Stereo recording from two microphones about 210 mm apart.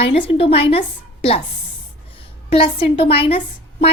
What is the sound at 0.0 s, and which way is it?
A woman's voice, 30° left (ahead or behind).